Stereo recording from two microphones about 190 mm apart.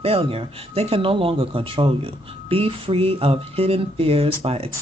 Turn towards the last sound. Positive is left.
turn(degrees=-30)  # may be behind; listen again after turning